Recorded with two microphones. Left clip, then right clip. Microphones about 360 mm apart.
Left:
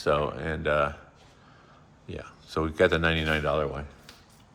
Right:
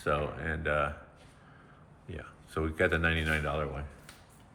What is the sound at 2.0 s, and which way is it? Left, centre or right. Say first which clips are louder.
Speech: left 5 dB; centre.